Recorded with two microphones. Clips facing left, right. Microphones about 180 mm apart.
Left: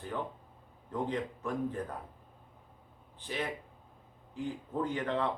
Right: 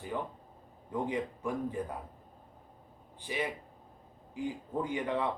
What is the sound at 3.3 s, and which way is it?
A man's voice, 10° right (ahead or behind).